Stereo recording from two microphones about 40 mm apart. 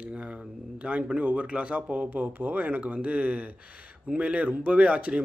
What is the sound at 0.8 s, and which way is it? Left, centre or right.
A man's voice, right.